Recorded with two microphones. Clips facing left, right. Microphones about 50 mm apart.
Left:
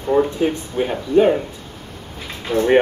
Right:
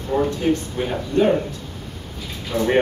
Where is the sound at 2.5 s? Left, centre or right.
Centre.